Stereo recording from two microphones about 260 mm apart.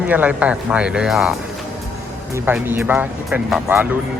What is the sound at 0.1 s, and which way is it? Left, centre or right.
Speech, centre.